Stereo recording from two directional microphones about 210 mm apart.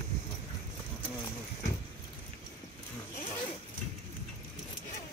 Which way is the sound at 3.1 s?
30° left (ahead or behind).